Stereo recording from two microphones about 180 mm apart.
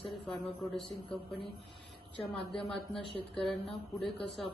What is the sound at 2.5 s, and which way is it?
Speech, centre (ahead or behind).